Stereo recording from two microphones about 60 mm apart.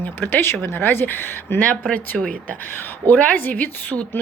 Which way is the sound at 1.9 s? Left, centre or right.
Centre.